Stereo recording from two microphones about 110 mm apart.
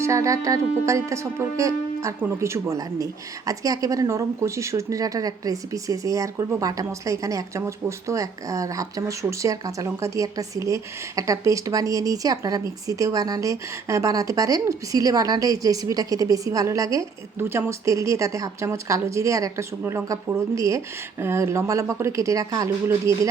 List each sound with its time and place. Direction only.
0.0 s music: 30° right (ahead or behind)
17.5 s speech: 25° right (ahead or behind)